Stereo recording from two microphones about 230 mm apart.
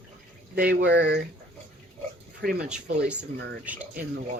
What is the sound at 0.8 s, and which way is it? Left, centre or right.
Speech, right.